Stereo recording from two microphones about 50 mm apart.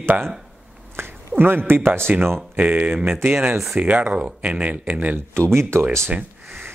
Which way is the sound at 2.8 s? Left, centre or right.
Right.